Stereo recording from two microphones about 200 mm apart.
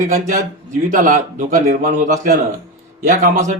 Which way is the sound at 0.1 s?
40° right (ahead or behind).